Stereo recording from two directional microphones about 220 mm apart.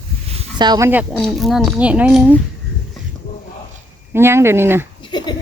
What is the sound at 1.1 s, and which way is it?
Speech, centre (ahead or behind).